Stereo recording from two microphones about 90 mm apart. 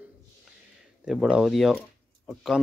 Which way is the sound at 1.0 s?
5° right (ahead or behind).